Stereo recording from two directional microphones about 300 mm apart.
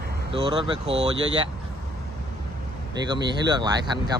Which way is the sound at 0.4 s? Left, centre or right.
Centre.